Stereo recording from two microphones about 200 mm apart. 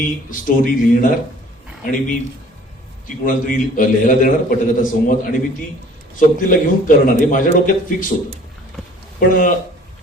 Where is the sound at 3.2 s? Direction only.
45° left (ahead or behind).